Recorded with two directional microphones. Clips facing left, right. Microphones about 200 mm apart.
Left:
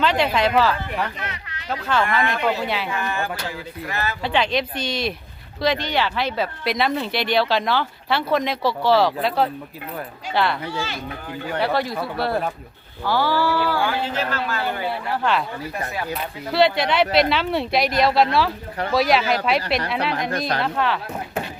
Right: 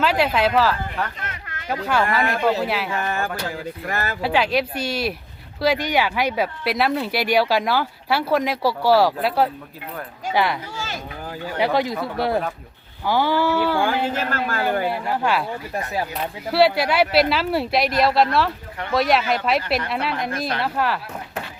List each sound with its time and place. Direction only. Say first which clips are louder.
0.0 s speech: even; 5° right (ahead or behind)
1.2 s a sound: left 1 dB; 50° right (ahead or behind)
1.7 s speech: right 1 dB; 10° right (ahead or behind)
2.9 s speech: right 1 dB; 45° right (ahead or behind)
4.2 s speech: right 2 dB; 5° right (ahead or behind)
11.6 s speech: right 3 dB; 15° right (ahead or behind)
13.7 s speech: right 2 dB; 50° right (ahead or behind)
14.8 s speech: right 1 dB; 10° right (ahead or behind)
16.5 s speech: right 1 dB; 5° right (ahead or behind)